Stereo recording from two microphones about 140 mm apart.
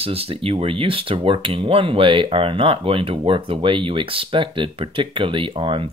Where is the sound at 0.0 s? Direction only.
40° right (ahead or behind).